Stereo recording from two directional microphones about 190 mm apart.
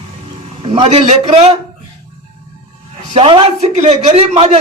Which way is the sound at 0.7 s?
35° right (ahead or behind).